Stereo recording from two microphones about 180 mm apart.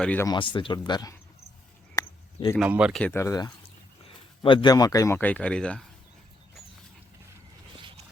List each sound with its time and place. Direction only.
0.0 s speech: 10° left (ahead or behind)
0.3 s speech: 25° left (ahead or behind)
2.0 s a sound: 20° left (ahead or behind)
2.6 s speech: 5° right (ahead or behind)
3.0 s speech: 15° left (ahead or behind)